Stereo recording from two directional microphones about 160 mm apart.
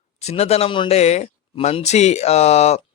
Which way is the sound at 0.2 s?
40° left (ahead or behind).